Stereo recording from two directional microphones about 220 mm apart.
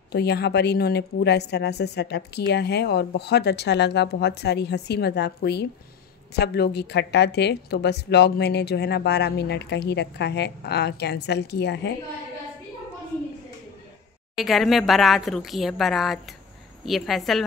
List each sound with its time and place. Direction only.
0.1 s a woman's voice: 50° left (ahead or behind)
14.3 s speech: centre (ahead or behind)